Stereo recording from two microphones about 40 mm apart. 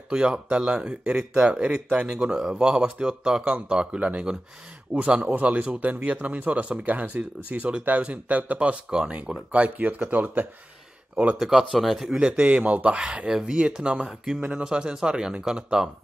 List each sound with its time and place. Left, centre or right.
0.1 s speech: right
0.5 s speech: right
2.3 s speech: centre
2.6 s speech: right
5.3 s speech: right
8.5 s speech: right
11.3 s speech: centre
11.7 s speech: centre
12.1 s speech: right
12.9 s speech: right